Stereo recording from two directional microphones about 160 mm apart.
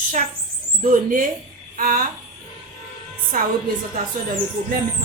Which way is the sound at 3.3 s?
55° right (ahead or behind).